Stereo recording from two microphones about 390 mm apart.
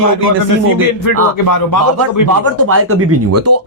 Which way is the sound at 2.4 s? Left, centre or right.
Right.